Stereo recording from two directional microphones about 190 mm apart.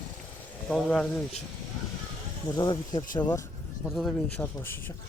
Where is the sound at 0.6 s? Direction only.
5° left (ahead or behind).